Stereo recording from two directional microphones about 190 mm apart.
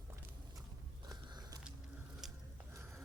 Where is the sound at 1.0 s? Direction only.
20° right (ahead or behind).